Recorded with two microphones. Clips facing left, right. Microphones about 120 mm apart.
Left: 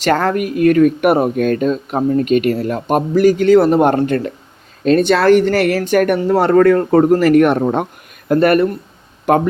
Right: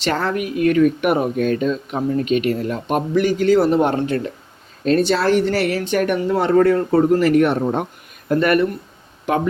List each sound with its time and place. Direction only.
0.0 s speech: 50° left (ahead or behind)
2.8 s a man's voice: 40° left (ahead or behind)
3.3 s speech: 70° left (ahead or behind); by 4.2 s 50° left (ahead or behind)
4.9 s speech: 65° left (ahead or behind); by 7.9 s 85° left
8.4 s speech: 45° left (ahead or behind)